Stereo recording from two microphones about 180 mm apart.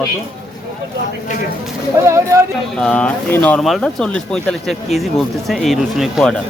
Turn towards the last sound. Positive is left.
turn(degrees=0)  # may be behind; listen again after turning